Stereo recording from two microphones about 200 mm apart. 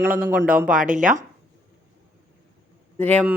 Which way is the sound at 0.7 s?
40° right (ahead or behind).